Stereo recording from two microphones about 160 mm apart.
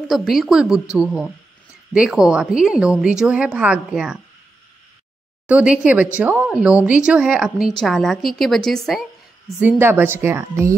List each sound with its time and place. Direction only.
0.1 s a woman's voice: centre (ahead or behind)
5.5 s a woman's voice: 5° right (ahead or behind)
9.6 s a woman's voice: 10° right (ahead or behind)